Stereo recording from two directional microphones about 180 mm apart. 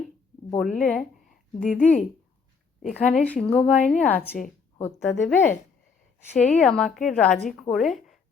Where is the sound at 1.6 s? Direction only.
45° left (ahead or behind).